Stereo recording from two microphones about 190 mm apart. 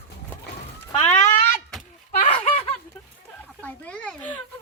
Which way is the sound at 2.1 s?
35° left (ahead or behind).